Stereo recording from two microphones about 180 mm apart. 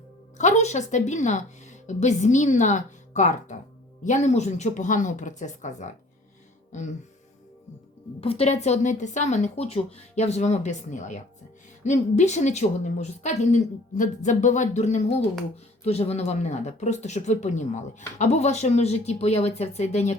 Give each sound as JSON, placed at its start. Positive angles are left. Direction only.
{"t": 0.3, "sound": "a woman's voice", "side_deg": 40}
{"t": 6.7, "sound": "music", "side_deg": 40}
{"t": 8.2, "sound": "a woman's voice", "side_deg": 35}